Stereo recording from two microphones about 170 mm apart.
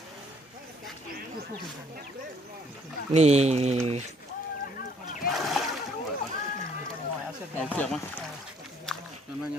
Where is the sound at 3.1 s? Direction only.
40° right (ahead or behind).